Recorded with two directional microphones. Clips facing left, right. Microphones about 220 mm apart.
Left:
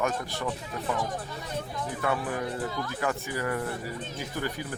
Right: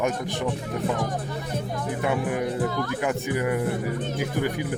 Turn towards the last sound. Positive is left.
turn(degrees=-15)  # may be behind; listen again after turning